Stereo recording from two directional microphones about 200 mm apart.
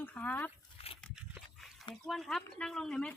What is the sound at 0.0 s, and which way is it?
Speech, 10° left (ahead or behind).